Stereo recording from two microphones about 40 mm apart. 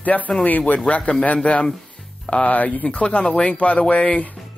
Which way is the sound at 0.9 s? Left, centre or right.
Left.